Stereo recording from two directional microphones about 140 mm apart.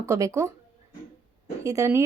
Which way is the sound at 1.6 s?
20° right (ahead or behind).